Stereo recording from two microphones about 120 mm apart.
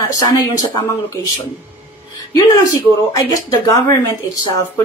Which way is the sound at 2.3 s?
30° left (ahead or behind).